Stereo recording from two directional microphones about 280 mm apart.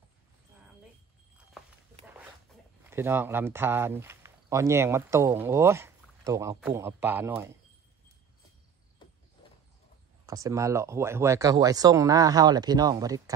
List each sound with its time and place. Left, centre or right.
2.9 s speech: centre
10.2 s speech: centre